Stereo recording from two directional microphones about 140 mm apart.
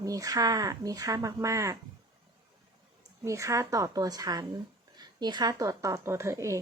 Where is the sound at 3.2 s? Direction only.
20° right (ahead or behind).